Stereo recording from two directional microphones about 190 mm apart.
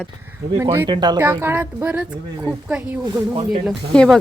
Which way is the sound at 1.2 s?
10° right (ahead or behind).